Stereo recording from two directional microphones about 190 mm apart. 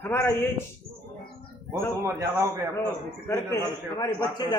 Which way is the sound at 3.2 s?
20° left (ahead or behind).